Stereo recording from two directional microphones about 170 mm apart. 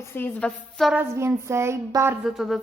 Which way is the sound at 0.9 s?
10° right (ahead or behind).